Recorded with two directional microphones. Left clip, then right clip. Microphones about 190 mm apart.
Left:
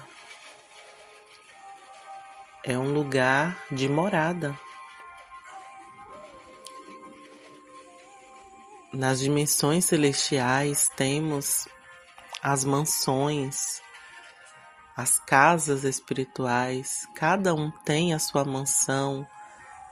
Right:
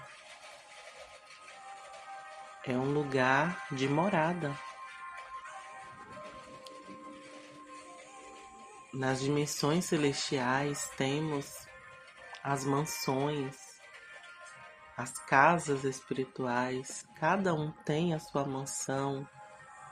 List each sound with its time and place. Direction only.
2.6 s speech: 40° left (ahead or behind)
9.0 s speech: 50° left (ahead or behind)
14.9 s speech: 50° left (ahead or behind)